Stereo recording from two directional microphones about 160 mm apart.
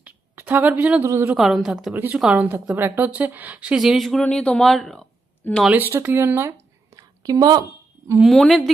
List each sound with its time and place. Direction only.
0.0 s speech: 10° right (ahead or behind)
1.4 s a woman's voice: centre (ahead or behind)
5.6 s speech: 10° right (ahead or behind)
6.9 s a sound: 25° right (ahead or behind)
8.2 s a woman's voice: centre (ahead or behind)